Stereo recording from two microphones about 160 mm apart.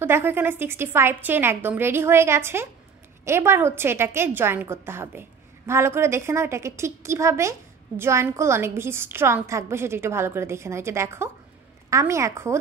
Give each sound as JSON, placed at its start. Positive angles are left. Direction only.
{"t": 0.0, "sound": "a woman's voice", "side_deg": -15}